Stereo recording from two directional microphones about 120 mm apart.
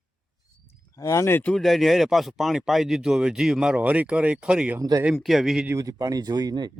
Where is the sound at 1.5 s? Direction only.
Centre (ahead or behind).